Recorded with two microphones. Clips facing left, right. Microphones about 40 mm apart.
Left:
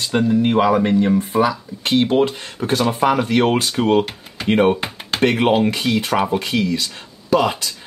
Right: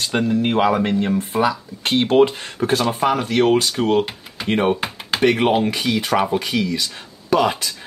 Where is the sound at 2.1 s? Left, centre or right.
Right.